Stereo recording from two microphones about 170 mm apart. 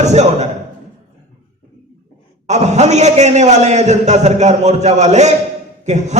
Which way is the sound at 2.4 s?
40° right (ahead or behind).